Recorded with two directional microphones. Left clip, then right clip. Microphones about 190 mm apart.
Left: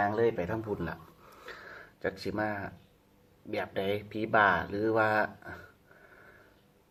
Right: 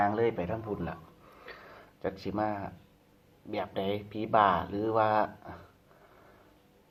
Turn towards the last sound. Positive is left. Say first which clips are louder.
# right 1 dB
turn(degrees=5)  # may be behind; listen again after turning